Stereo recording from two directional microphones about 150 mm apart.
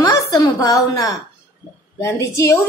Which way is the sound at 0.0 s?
25° left (ahead or behind).